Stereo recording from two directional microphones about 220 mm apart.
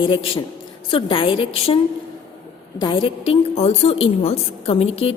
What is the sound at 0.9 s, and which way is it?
Speech, 25° left (ahead or behind).